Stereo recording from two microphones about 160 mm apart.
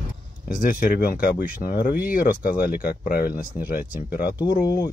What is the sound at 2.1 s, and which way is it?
Speech, 60° left (ahead or behind).